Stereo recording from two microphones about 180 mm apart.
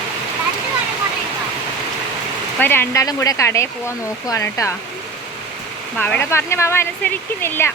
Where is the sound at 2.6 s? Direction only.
10° left (ahead or behind).